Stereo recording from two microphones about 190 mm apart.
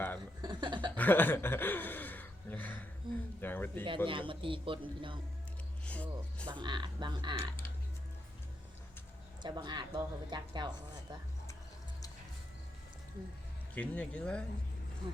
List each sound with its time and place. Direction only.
0.2 s chuckle: 25° right (ahead or behind)
0.9 s gasp: 10° left (ahead or behind)
3.1 s a sound: 25° right (ahead or behind)
3.4 s a sound: 10° left (ahead or behind)
3.8 s a woman's voice: 25° right (ahead or behind)
5.8 s speech: 5° left (ahead or behind)
6.5 s a woman's voice: 25° right (ahead or behind)
9.4 s a woman's voice: 25° right (ahead or behind)
13.7 s speech: 5° left (ahead or behind)